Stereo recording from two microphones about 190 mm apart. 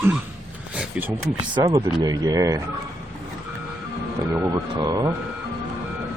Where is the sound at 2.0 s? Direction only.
20° right (ahead or behind).